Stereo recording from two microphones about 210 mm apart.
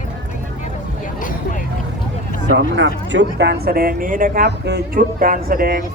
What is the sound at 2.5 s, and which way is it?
Speech, 65° right (ahead or behind).